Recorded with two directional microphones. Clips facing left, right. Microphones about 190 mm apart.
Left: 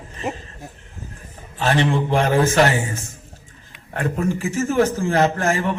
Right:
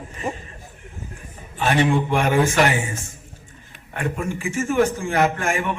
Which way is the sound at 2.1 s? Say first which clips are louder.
Left 1 dB; 40° left (ahead or behind).